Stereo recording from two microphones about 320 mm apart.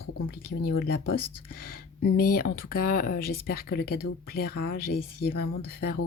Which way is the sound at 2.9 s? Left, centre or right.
Left.